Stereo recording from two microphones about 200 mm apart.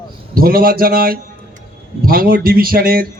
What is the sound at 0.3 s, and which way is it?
A man's voice, 45° right (ahead or behind).